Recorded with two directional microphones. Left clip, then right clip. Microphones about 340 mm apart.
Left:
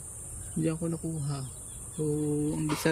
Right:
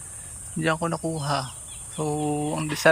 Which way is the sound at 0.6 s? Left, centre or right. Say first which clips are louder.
Right 8 dB; right.